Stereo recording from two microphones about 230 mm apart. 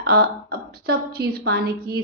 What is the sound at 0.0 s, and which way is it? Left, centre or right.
A woman's voice, right.